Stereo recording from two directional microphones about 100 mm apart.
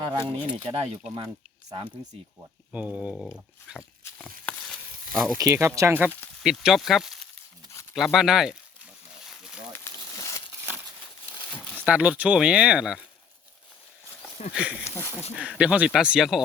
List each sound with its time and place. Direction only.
0.0 s speech: 60° right (ahead or behind)
2.7 s speech: 15° right (ahead or behind)
4.2 s sizzle: 5° left (ahead or behind)
5.4 s speech: 30° right (ahead or behind)
6.4 s speech: 5° right (ahead or behind)
7.9 s a sound: 5° right (ahead or behind)
9.7 s a sound: 25° left (ahead or behind)
11.9 s speech: 15° right (ahead or behind)
14.5 s speech: 10° right (ahead or behind)
14.8 s speech: 25° left (ahead or behind)
15.4 s speech: 10° right (ahead or behind)